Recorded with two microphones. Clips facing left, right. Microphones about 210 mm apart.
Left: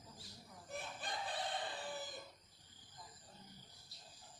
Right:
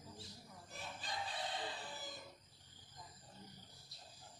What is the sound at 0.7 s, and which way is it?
Chicken, 55° left (ahead or behind).